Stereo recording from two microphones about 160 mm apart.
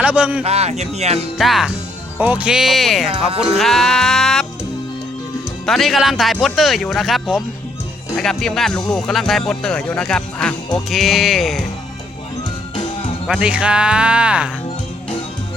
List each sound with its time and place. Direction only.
0.0 s speech: 5° right (ahead or behind)
0.4 s speech: 40° right (ahead or behind)
1.4 s speech: centre (ahead or behind)
5.6 s speech: centre (ahead or behind)
13.2 s speech: 5° right (ahead or behind)